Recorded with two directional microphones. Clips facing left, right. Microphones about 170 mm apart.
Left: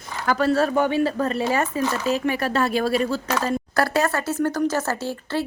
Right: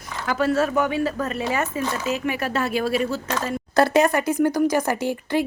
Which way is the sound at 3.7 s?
20° right (ahead or behind).